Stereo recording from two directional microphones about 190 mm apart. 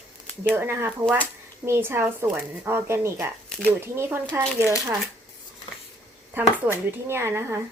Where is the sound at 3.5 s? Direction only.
10° left (ahead or behind).